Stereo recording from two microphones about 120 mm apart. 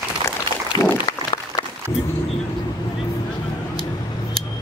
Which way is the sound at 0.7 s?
40° left (ahead or behind).